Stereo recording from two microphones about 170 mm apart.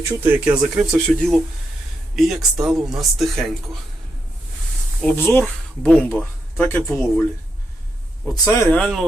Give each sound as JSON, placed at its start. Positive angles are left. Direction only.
{"t": 0.2, "sound": "speech", "side_deg": -10}
{"t": 1.0, "sound": "speech", "side_deg": 5}
{"t": 5.0, "sound": "speech", "side_deg": 15}
{"t": 8.5, "sound": "speech", "side_deg": 15}
{"t": 8.8, "sound": "speech", "side_deg": 0}